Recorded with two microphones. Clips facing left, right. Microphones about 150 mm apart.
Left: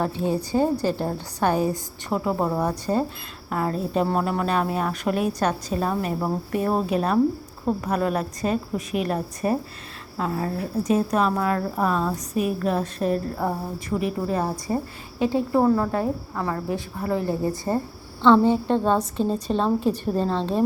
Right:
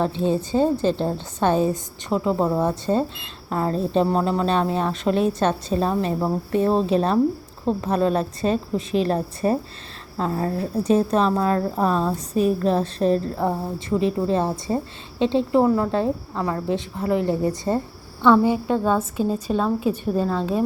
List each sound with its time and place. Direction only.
0.0 s a woman's voice: 25° right (ahead or behind); by 20.7 s 5° right (ahead or behind)